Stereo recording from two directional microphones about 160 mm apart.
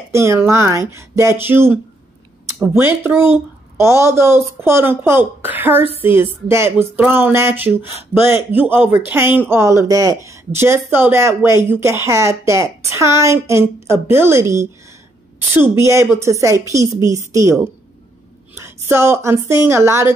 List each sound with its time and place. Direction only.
0.1 s speech: 15° right (ahead or behind)
18.6 s speech: 15° right (ahead or behind)